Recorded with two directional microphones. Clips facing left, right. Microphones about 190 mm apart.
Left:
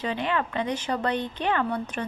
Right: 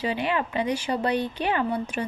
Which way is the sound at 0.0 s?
10° right (ahead or behind).